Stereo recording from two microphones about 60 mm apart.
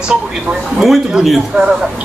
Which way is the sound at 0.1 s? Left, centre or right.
Centre.